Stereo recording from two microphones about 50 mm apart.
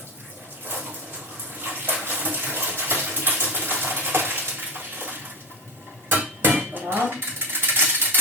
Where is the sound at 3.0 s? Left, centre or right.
Right.